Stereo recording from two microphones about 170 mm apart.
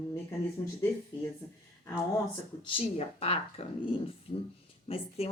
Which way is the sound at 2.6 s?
35° left (ahead or behind).